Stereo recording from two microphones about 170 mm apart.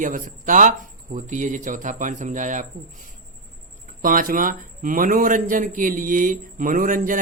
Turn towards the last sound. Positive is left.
turn(degrees=-55)  # may be behind; listen again after turning